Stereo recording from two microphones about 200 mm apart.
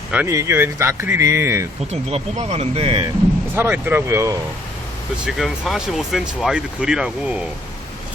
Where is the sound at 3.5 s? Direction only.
10° right (ahead or behind).